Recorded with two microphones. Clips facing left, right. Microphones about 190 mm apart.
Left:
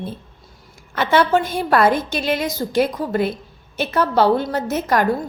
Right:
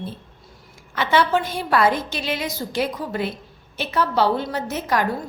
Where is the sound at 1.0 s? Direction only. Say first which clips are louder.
Left 3 dB; 50° left (ahead or behind).